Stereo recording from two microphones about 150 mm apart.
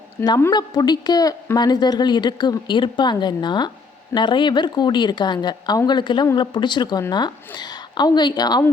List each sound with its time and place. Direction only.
0.3 s a woman's voice: 25° left (ahead or behind)